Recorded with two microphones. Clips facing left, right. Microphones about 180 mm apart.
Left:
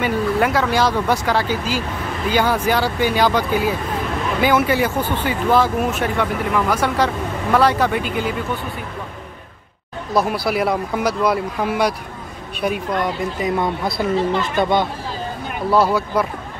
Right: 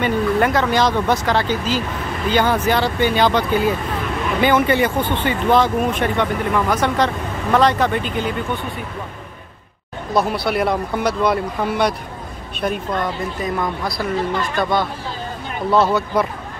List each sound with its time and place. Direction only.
0.0 s speech: 5° left (ahead or behind)
10.1 s speech: 5° left (ahead or behind); by 14.9 s 20° left (ahead or behind)
15.7 s speech: 5° left (ahead or behind)